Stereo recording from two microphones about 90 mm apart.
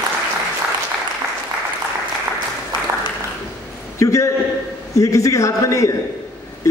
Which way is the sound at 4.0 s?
35° left (ahead or behind).